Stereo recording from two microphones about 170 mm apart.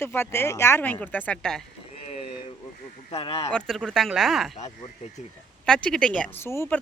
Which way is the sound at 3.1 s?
35° left (ahead or behind).